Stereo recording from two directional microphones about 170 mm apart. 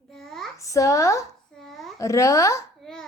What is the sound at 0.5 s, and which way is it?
Speech, 20° left (ahead or behind).